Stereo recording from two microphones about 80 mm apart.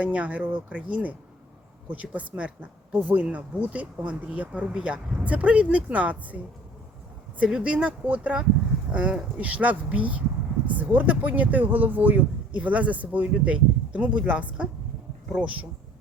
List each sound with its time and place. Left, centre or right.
0.0 s speech: centre